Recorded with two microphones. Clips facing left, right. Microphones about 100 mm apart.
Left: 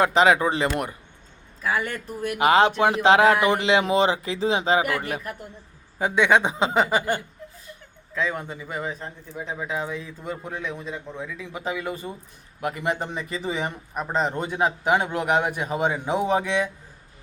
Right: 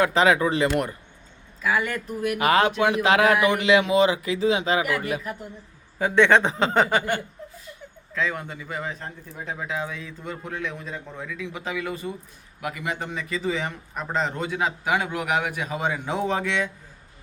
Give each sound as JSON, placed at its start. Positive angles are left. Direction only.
{"t": 0.0, "sound": "a man's voice", "side_deg": 20}
{"t": 1.6, "sound": "a man's voice", "side_deg": 35}
{"t": 2.4, "sound": "a man's voice", "side_deg": 25}
{"t": 6.0, "sound": "speech", "side_deg": 15}
{"t": 8.1, "sound": "a man's voice", "side_deg": 20}
{"t": 12.6, "sound": "a man's voice", "side_deg": 35}
{"t": 13.0, "sound": "a man's voice", "side_deg": 20}